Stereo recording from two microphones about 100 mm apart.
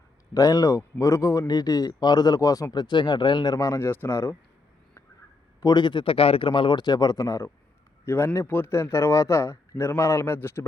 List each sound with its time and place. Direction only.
0.3 s speech: 35° left (ahead or behind)
2.7 s speech: 50° left (ahead or behind); by 4.4 s 25° left (ahead or behind)
5.5 s a man's voice: 45° left (ahead or behind); by 10.7 s 25° left (ahead or behind)